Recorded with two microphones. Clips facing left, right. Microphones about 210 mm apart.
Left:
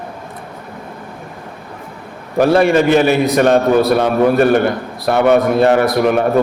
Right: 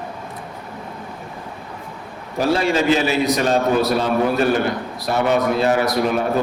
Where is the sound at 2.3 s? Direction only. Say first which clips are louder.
Left 7 dB; 60° left (ahead or behind).